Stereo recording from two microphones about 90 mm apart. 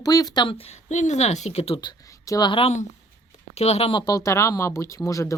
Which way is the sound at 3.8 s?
70° left (ahead or behind).